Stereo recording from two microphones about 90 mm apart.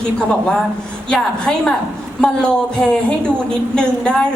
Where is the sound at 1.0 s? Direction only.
10° left (ahead or behind).